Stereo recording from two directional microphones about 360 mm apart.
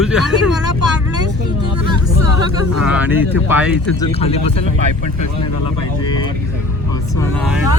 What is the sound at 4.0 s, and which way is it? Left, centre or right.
Speech, centre.